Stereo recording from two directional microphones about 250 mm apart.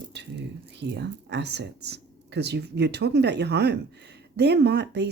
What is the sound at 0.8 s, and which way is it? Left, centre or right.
Speech, right.